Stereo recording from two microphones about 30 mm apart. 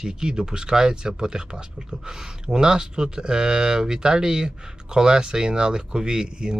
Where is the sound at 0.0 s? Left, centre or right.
Right.